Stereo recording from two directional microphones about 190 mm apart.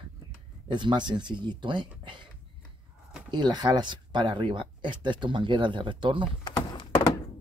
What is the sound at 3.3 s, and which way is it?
Speech, 25° right (ahead or behind).